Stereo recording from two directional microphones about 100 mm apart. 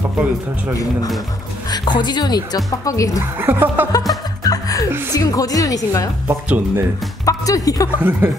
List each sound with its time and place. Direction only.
1.7 s speech: 45° left (ahead or behind)
3.3 s speech: 20° right (ahead or behind)
4.4 s chuckle: 35° left (ahead or behind)
5.1 s a woman's voice: 35° left (ahead or behind)
6.2 s speech: 20° right (ahead or behind)
7.2 s a woman's voice: 35° left (ahead or behind)
7.9 s speech: 20° right (ahead or behind)